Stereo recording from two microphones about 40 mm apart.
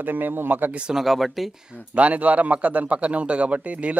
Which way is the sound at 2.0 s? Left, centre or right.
Right.